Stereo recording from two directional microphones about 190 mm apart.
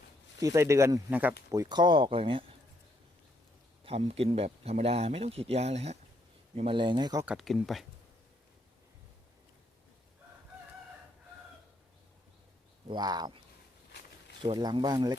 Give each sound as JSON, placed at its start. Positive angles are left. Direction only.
{"t": 0.3, "sound": "speech", "side_deg": -15}
{"t": 3.8, "sound": "speech", "side_deg": -30}
{"t": 7.3, "sound": "speech", "side_deg": 0}
{"t": 12.9, "sound": "speech", "side_deg": -20}
{"t": 14.4, "sound": "speech", "side_deg": -25}